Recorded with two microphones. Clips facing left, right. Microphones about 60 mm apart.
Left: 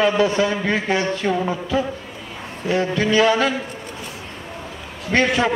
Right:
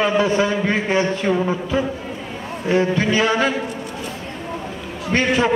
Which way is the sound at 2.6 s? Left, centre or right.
Right.